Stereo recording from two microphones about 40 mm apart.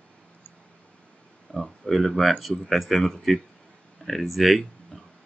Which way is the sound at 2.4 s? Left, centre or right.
Centre.